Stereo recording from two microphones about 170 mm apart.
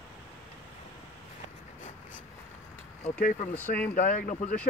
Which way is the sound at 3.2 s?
50° left (ahead or behind).